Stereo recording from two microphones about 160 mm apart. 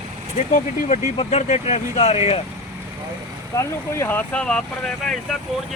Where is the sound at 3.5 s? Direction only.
20° left (ahead or behind).